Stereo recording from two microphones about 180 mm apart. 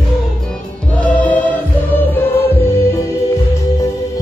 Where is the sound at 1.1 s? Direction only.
10° left (ahead or behind).